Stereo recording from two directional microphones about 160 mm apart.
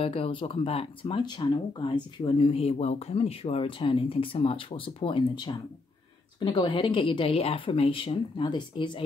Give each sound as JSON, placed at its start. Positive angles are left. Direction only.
{"t": 0.0, "sound": "speech", "side_deg": 35}